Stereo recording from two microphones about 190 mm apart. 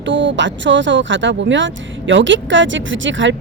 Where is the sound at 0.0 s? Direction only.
75° right (ahead or behind).